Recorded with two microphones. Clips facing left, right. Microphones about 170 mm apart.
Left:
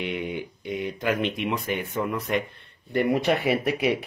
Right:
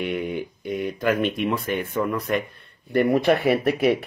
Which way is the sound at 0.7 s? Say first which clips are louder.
Right 3 dB; 45° right (ahead or behind).